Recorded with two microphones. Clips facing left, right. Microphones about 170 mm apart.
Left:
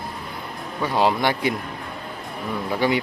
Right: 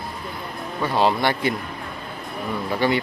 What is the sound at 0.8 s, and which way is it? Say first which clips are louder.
Speech: even; 15° left (ahead or behind).